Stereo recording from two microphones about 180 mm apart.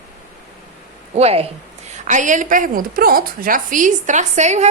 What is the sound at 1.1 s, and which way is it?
A woman's voice, 35° right (ahead or behind).